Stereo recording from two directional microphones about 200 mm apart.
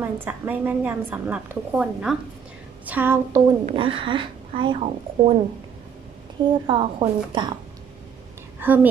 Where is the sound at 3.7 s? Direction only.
25° right (ahead or behind).